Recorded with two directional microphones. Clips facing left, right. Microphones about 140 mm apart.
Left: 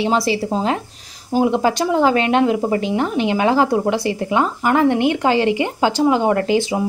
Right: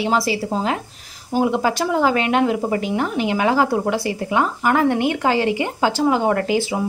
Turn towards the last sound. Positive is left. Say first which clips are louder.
# left 2 dB
turn(degrees=25)  # may be behind; listen again after turning